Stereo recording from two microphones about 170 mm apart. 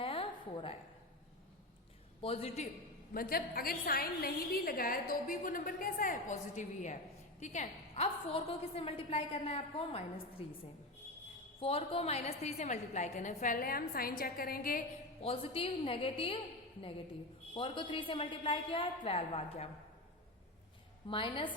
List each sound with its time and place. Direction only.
0.0 s a sound: 30° left (ahead or behind)
2.2 s a woman's voice: 35° left (ahead or behind)
3.1 s a woman's voice: 60° left (ahead or behind); by 10.4 s 35° left (ahead or behind)
11.6 s a woman's voice: 35° left (ahead or behind); by 14.8 s 55° left (ahead or behind)
15.2 s a woman's voice: 35° left (ahead or behind)
17.5 s a woman's voice: 30° left (ahead or behind)
21.1 s a woman's voice: 30° left (ahead or behind)